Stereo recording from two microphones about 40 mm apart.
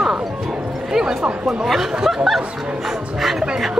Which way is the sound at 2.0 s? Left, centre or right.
Centre.